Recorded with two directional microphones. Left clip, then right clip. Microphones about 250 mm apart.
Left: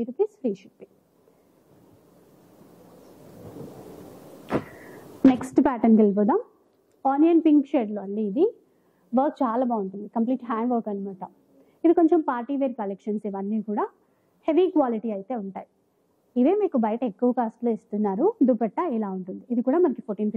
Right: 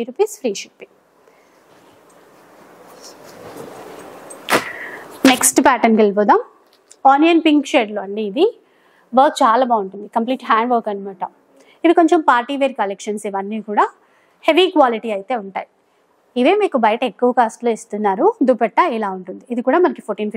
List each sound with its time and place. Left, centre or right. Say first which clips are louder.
0.0 s a woman's voice: right 7 dB; centre
2.1 s vehicle: right 10 dB; centre
4.6 s a sound: right 11 dB; centre
7.0 s a woman's voice: right 9 dB; centre
9.7 s a woman's voice: right 10 dB; centre
10.2 s a woman's voice: right 11 dB; centre